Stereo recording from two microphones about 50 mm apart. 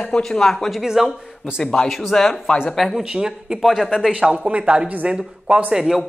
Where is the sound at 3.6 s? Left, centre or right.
Centre.